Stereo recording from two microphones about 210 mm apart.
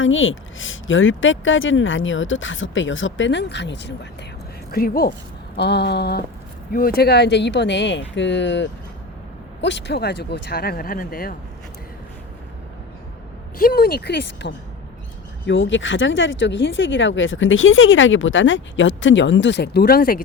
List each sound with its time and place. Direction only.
0.0 s speech: 70° left (ahead or behind)
4.7 s speech: 45° left (ahead or behind)
13.6 s speech: 45° left (ahead or behind)